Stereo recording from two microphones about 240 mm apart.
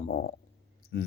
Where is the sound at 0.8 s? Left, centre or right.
Left.